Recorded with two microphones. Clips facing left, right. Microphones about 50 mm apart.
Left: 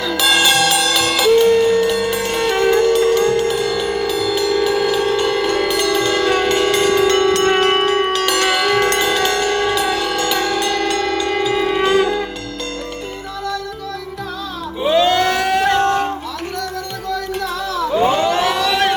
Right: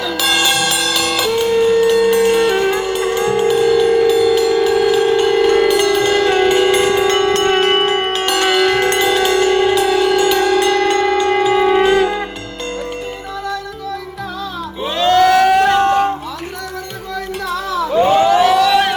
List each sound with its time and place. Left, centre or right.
0.0 s music: centre
7.6 s a sound: right
8.4 s bell: centre
9.0 s music: centre
9.7 s music: centre
10.0 s shofar: centre
14.8 s a sound: centre
15.8 s music: centre
18.1 s a sound: centre